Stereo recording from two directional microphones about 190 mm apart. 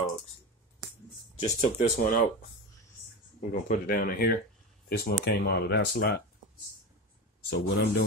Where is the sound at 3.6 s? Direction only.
50° left (ahead or behind).